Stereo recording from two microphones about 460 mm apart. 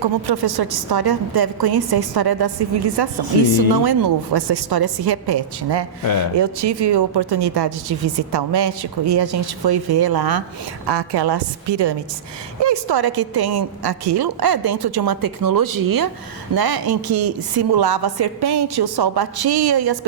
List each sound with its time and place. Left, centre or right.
0.0 s a woman's voice: right